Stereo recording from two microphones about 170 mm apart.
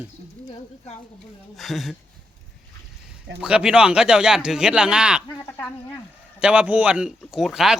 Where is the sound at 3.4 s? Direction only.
5° right (ahead or behind).